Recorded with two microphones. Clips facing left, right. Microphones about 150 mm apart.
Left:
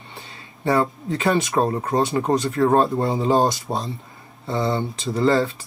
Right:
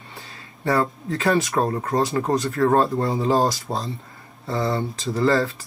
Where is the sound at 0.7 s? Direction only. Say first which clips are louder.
Left 1 dB; 20° left (ahead or behind).